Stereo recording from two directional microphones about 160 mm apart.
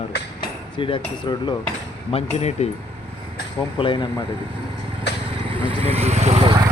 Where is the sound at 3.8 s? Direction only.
30° left (ahead or behind).